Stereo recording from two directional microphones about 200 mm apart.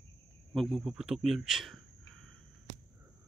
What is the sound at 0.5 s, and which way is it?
Speech, centre (ahead or behind).